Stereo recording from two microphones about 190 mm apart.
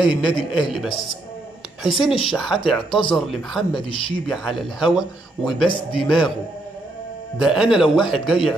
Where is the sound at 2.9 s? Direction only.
25° left (ahead or behind).